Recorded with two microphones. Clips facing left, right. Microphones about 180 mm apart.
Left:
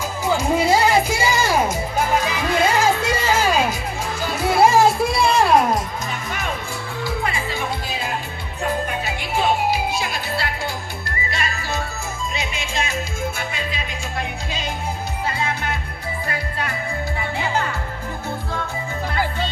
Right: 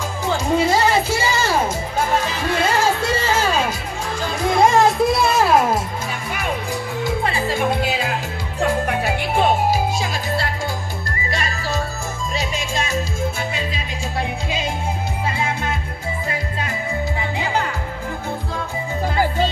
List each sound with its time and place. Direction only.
0.3 s music: 10° left (ahead or behind); by 5.8 s 5° right (ahead or behind)
7.0 s music: 20° right (ahead or behind)
7.3 s music: 40° right (ahead or behind)
7.7 s music: 75° right (ahead or behind); by 13.0 s 40° right (ahead or behind)